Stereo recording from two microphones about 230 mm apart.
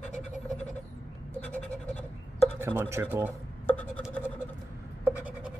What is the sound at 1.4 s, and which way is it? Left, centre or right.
Scratch, centre.